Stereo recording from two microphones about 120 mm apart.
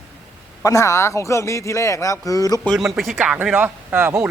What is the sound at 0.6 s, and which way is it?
Speech, 25° left (ahead or behind).